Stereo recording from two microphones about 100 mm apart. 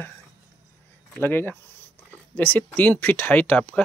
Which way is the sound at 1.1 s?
20° left (ahead or behind).